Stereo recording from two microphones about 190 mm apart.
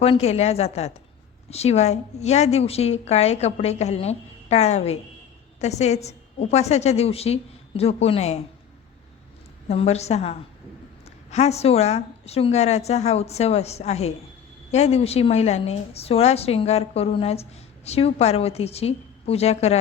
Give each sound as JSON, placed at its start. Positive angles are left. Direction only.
{"t": 0.0, "sound": "a woman's voice", "side_deg": 30}
{"t": 9.6, "sound": "a woman's voice", "side_deg": 35}